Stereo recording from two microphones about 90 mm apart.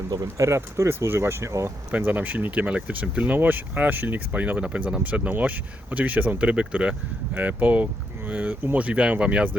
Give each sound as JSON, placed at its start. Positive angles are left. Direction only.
{"t": 0.1, "sound": "speech", "side_deg": -40}
{"t": 1.9, "sound": "speech", "side_deg": -20}